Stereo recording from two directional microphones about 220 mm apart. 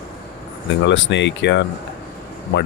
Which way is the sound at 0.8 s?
55° left (ahead or behind).